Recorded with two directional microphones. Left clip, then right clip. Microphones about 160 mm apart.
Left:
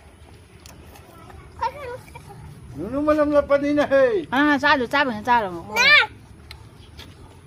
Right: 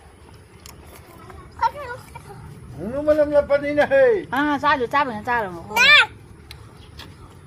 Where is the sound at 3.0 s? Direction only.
35° left (ahead or behind).